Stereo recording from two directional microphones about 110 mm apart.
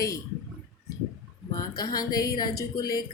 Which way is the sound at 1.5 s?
35° left (ahead or behind).